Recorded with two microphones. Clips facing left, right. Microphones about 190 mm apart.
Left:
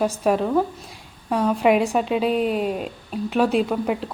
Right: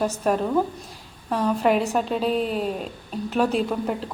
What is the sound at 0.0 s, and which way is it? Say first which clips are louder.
A woman's voice: left 2 dB; 5° left (ahead or behind).